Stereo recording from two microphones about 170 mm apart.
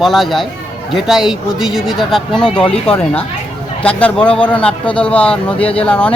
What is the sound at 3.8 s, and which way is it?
A man's voice, 5° left (ahead or behind).